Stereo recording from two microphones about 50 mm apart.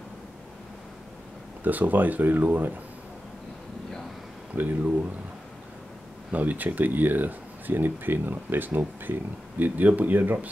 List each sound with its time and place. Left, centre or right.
1.6 s speech: right
4.6 s speech: right
6.3 s speech: right